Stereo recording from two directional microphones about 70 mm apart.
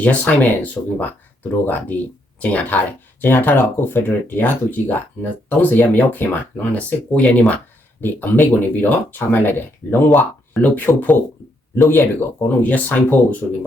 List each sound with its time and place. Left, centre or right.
0.0 s speech: left